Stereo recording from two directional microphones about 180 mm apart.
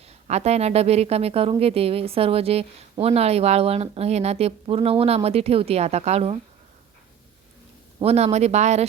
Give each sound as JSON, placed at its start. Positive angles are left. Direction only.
{"t": 0.3, "sound": "speech", "side_deg": -35}
{"t": 8.0, "sound": "speech", "side_deg": -35}